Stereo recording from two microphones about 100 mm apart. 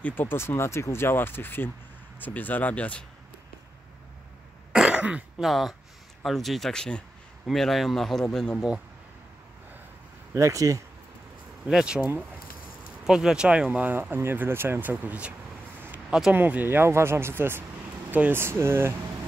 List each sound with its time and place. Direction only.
0.0 s speech: 20° left (ahead or behind)
4.7 s throat clearing: 10° right (ahead or behind)
5.5 s speech: centre (ahead or behind)
10.3 s speech: 30° right (ahead or behind)
11.6 s speech: 10° right (ahead or behind)
16.3 s speech: 20° right (ahead or behind)